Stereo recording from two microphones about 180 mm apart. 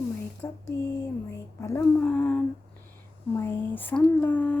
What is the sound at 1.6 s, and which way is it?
Speech, 15° left (ahead or behind).